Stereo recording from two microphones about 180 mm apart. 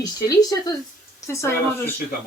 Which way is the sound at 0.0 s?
20° left (ahead or behind).